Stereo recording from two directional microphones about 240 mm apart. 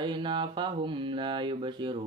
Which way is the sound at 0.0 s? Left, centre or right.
Centre.